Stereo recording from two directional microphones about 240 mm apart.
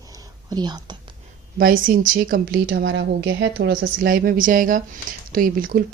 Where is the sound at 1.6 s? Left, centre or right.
Right.